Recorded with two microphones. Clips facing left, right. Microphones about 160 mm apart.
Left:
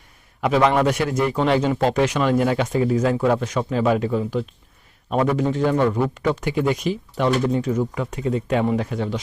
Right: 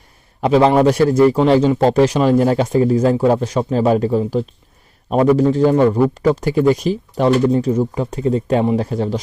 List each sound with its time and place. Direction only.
0.4 s a man's voice: 30° right (ahead or behind)